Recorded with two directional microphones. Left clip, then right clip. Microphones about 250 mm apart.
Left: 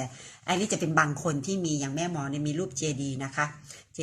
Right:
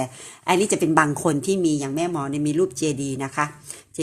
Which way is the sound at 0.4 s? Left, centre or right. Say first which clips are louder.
Right 9 dB; right.